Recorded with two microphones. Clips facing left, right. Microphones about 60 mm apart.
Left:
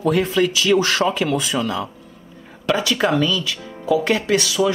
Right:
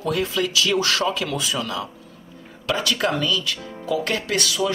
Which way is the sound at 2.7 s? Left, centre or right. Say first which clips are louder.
Left 4 dB; centre.